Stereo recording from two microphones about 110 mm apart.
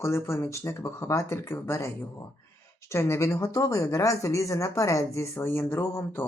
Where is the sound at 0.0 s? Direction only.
25° left (ahead or behind).